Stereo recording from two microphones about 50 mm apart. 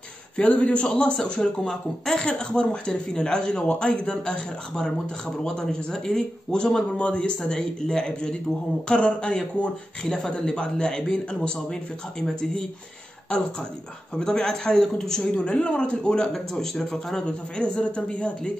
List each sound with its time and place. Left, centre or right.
0.4 s a man's voice: left
10.0 s speech: centre
10.4 s speech: centre
14.1 s a man's voice: centre
17.7 s a man's voice: left